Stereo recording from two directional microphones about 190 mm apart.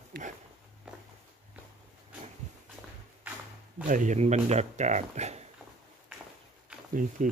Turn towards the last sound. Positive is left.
turn(degrees=-40)  # may be behind; listen again after turning